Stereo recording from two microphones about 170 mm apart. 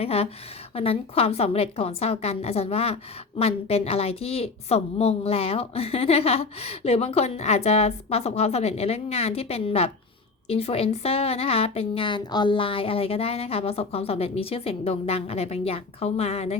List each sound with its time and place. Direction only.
0.0 s a woman's voice: 35° left (ahead or behind)